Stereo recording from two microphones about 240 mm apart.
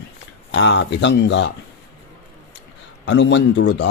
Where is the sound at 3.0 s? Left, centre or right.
Left.